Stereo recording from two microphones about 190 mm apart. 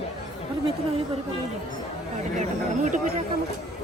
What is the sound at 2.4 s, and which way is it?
Speech, 40° right (ahead or behind).